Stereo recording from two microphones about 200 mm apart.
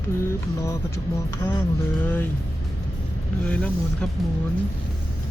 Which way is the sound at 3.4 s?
10° left (ahead or behind).